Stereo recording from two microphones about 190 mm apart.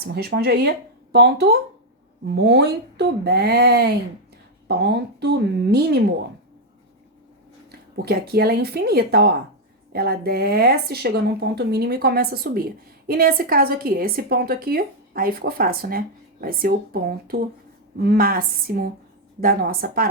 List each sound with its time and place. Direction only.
0.0 s speech: 55° right (ahead or behind)
7.9 s a woman's voice: 55° right (ahead or behind)